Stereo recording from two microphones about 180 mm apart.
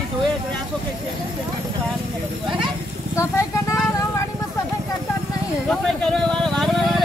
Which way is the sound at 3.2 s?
15° left (ahead or behind).